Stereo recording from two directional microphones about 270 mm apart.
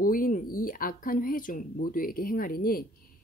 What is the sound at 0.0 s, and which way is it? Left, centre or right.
Speech, left.